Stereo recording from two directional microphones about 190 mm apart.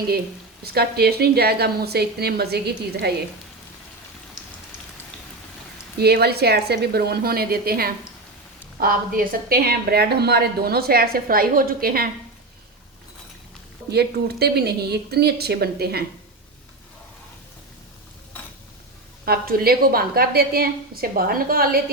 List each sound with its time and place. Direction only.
0.6 s a woman's voice: 55° right (ahead or behind)
6.0 s a woman's voice: 55° right (ahead or behind)
13.9 s a woman's voice: 60° right (ahead or behind)
19.2 s a woman's voice: 55° right (ahead or behind)